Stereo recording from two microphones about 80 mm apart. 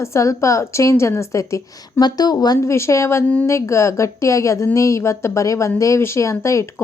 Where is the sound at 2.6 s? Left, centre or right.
Left.